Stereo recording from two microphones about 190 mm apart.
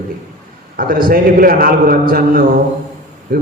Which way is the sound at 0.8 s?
50° right (ahead or behind).